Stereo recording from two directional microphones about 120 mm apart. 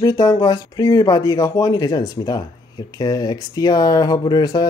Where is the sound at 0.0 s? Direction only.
30° left (ahead or behind).